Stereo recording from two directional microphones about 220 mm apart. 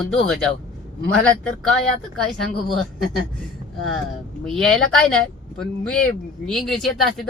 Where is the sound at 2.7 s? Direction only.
Centre (ahead or behind).